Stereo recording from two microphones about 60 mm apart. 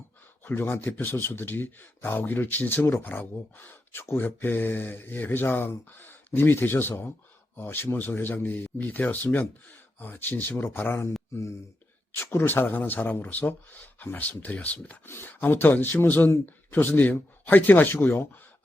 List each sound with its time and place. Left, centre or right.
0.4 s speech: left
12.1 s speech: left
15.0 s speech: left